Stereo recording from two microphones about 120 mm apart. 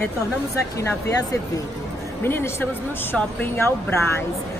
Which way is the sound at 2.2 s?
20° left (ahead or behind).